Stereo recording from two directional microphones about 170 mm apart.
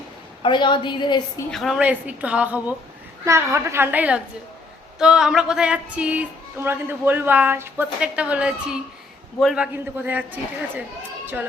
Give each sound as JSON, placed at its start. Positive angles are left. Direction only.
{"t": 0.4, "sound": "a woman's voice", "side_deg": 30}
{"t": 1.5, "sound": "a woman's voice", "side_deg": 0}